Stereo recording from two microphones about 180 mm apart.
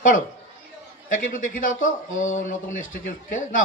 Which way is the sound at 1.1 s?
50° left (ahead or behind).